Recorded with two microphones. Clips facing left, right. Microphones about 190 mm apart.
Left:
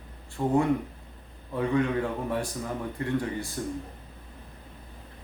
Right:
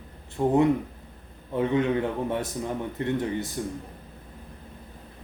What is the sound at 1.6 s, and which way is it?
Speech, 20° right (ahead or behind).